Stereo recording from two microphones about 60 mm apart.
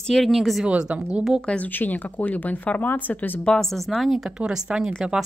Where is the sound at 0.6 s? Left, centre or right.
Centre.